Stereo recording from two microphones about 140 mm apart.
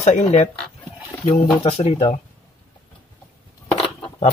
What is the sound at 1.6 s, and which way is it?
Speech, 45° left (ahead or behind).